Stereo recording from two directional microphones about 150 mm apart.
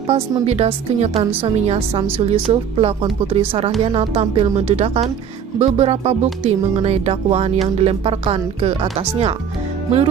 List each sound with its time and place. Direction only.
0.1 s a woman's voice: 45° right (ahead or behind)